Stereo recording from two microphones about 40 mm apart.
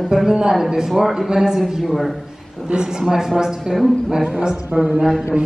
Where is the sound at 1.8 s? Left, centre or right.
Centre.